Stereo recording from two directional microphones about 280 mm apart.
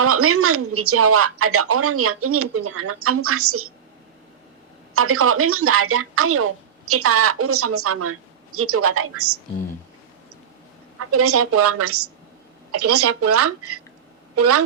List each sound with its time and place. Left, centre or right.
0.0 s speech: right
4.9 s speech: right
11.1 s speech: right